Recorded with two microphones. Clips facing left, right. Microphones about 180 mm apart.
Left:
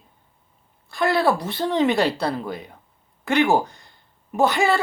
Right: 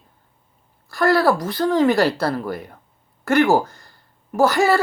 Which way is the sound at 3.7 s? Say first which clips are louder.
Right 2 dB; centre (ahead or behind).